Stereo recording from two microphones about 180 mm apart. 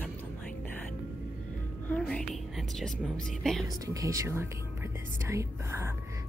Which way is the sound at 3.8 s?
20° right (ahead or behind).